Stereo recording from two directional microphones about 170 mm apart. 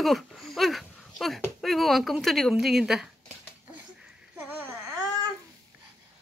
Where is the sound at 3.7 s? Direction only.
5° right (ahead or behind).